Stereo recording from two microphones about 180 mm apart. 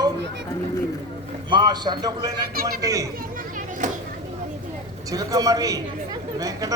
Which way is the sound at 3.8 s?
45° right (ahead or behind).